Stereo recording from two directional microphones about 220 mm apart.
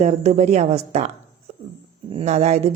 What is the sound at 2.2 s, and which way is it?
Speech, 30° right (ahead or behind).